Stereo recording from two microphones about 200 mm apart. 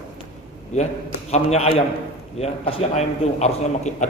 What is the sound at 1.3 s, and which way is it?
Speech, 30° left (ahead or behind).